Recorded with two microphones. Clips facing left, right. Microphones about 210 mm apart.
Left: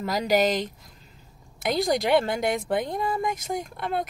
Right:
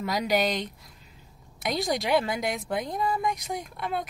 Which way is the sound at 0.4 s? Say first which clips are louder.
Left 4 dB; centre (ahead or behind).